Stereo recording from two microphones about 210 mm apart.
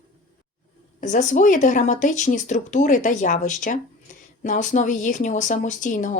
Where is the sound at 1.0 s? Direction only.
35° left (ahead or behind).